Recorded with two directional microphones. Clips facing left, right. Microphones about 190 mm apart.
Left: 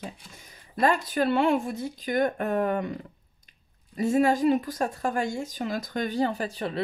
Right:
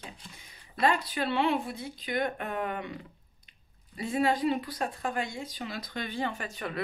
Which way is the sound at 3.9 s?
45° left (ahead or behind).